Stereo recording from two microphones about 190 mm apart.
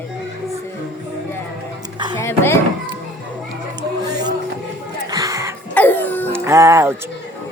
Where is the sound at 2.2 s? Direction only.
15° left (ahead or behind).